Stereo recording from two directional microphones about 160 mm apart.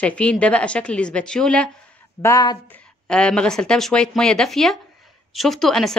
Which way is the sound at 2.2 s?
20° left (ahead or behind).